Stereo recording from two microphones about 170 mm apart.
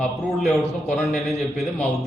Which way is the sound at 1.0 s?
Centre (ahead or behind).